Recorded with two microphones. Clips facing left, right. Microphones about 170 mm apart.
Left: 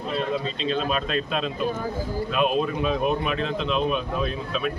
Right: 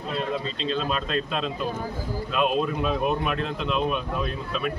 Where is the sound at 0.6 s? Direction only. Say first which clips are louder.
Left 2 dB; 5° left (ahead or behind).